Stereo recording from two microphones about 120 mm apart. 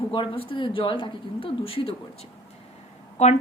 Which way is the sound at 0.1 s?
40° left (ahead or behind).